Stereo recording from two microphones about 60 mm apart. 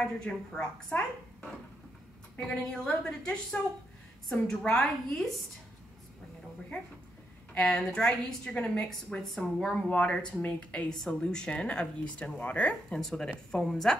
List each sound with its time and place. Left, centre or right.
0.0 s speech: centre
2.3 s a woman's voice: left
2.7 s speech: centre
7.5 s speech: centre
8.8 s speech: centre
9.8 s speech: centre
10.9 s speech: centre; by 12.7 s left
12.9 s speech: centre